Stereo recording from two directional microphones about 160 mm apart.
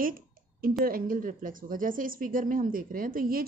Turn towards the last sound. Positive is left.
turn(degrees=-65)  # may be behind; listen again after turning